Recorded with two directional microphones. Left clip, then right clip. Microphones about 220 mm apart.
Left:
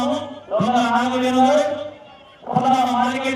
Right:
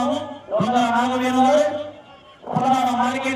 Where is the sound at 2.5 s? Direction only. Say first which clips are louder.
Left 2 dB; 5° right (ahead or behind).